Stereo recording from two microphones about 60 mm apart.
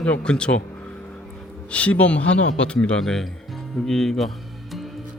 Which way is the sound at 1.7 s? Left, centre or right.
Left.